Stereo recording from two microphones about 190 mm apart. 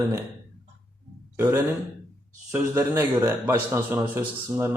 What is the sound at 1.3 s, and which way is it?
A man's voice, 15° right (ahead or behind).